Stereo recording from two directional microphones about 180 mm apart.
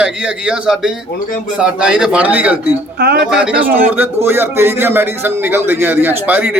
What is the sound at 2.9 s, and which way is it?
Speech, 65° right (ahead or behind).